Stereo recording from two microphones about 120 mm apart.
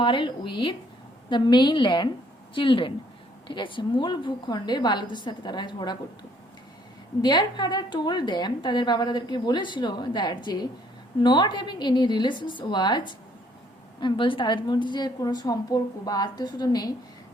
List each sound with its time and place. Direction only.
0.0 s a woman's voice: 40° left (ahead or behind)
7.2 s a woman's voice: 35° left (ahead or behind)